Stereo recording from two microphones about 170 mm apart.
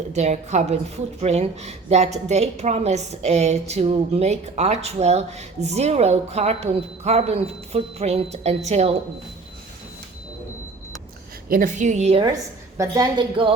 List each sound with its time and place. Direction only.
0.1 s a woman's voice: 40° right (ahead or behind)
11.4 s a woman's voice: 55° right (ahead or behind)
12.7 s a woman's voice: 20° right (ahead or behind)